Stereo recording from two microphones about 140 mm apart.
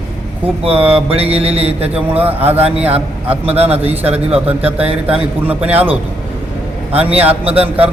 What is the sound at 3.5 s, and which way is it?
Speech, 45° right (ahead or behind).